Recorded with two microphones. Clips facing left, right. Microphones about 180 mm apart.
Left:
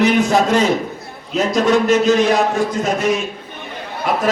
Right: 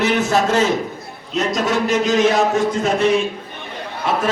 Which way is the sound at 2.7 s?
30° right (ahead or behind).